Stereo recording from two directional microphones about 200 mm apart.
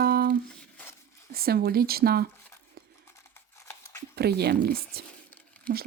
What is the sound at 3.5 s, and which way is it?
Crumpling, 15° left (ahead or behind).